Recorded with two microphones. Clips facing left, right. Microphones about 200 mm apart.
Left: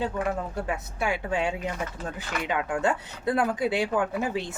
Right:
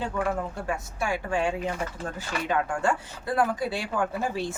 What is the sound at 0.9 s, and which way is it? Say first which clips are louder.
A woman's voice: even; 20° left (ahead or behind).